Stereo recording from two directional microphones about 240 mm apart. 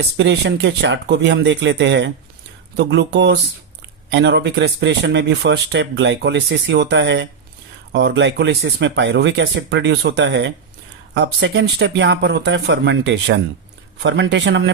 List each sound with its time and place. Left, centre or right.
0.2 s speech: right